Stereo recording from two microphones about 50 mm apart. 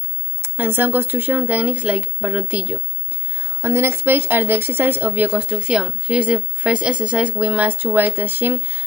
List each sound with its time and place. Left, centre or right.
0.4 s speech: right
3.3 s a sound: right
3.9 s speech: right
5.5 s speech: centre
6.2 s speech: right